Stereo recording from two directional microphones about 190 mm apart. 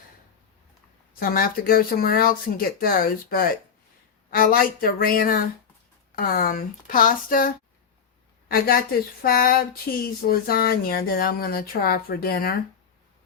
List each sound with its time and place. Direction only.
1.2 s speech: 50° left (ahead or behind)